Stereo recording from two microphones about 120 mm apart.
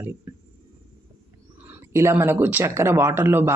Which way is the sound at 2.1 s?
20° right (ahead or behind).